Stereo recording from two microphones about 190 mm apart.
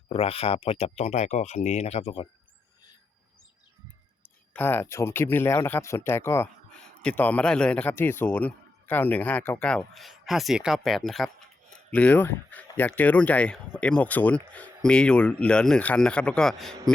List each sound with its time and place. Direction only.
0.1 s speech: 30° left (ahead or behind)
4.2 s a man's voice: 10° left (ahead or behind)